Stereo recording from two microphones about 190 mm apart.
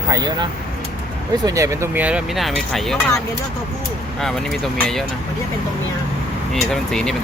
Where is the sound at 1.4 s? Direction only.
15° right (ahead or behind); by 3.0 s centre (ahead or behind).